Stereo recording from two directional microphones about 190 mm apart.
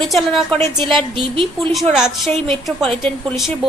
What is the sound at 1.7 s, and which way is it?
Speech, centre (ahead or behind).